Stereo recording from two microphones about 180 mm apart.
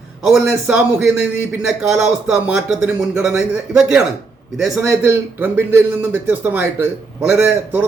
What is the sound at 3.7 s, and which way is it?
Speech, 5° right (ahead or behind).